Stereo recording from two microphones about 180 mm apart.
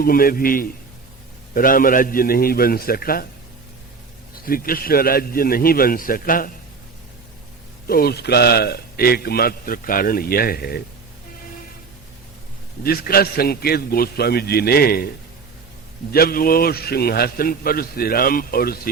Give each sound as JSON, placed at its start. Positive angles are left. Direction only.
{"t": 0.0, "sound": "a man's voice", "side_deg": 55}
{"t": 4.4, "sound": "a man's voice", "side_deg": 55}
{"t": 7.9, "sound": "a man's voice", "side_deg": 60}
{"t": 12.8, "sound": "a man's voice", "side_deg": 55}
{"t": 16.1, "sound": "a man's voice", "side_deg": 55}